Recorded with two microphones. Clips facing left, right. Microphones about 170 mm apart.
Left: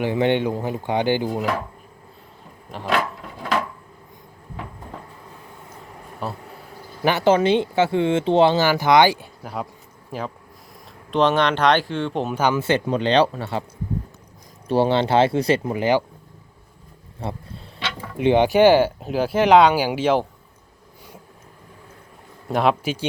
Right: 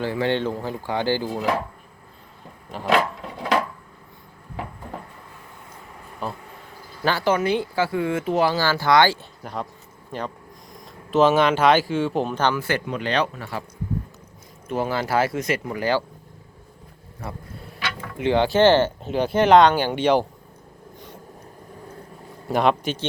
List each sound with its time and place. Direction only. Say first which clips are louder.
0.0 s speech: left 3 dB; 20° left (ahead or behind)
6.2 s speech: left 1 dB; centre (ahead or behind)
7.0 s speech: left 4 dB; 20° left (ahead or behind)
9.4 s speech: left 1 dB; 5° left (ahead or behind)
12.3 s speech: left 2 dB; 10° left (ahead or behind)
12.5 s speech: left 5 dB; 25° left (ahead or behind)
14.7 s speech: left 6 dB; 30° left (ahead or behind)
17.2 s a sound: left 4 dB; 25° left (ahead or behind)
18.2 s speech: left 3 dB; 20° left (ahead or behind); by 20.2 s 5° left (ahead or behind)
22.4 s speech: even; centre (ahead or behind)